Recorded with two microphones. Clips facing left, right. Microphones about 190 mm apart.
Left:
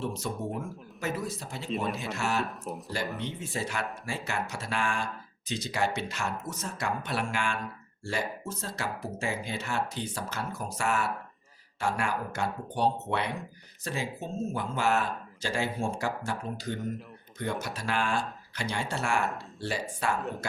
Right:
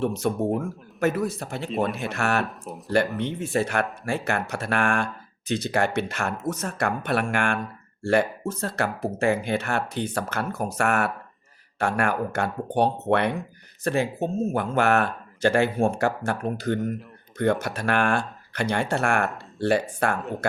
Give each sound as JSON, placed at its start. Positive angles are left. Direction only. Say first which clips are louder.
{"t": 0.0, "sound": "speech", "louder": "right 9 dB", "side_deg": -60}
{"t": 2.5, "sound": "speech", "louder": "even", "side_deg": 0}
{"t": 3.2, "sound": "speech", "louder": "right 9 dB", "side_deg": -60}